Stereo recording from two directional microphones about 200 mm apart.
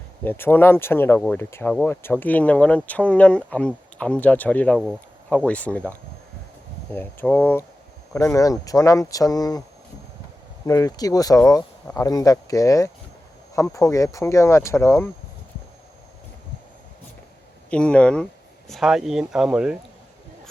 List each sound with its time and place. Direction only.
0.3 s speech: 10° left (ahead or behind)
6.9 s speech: 10° left (ahead or behind)
10.7 s speech: 15° left (ahead or behind)
17.7 s speech: 5° left (ahead or behind)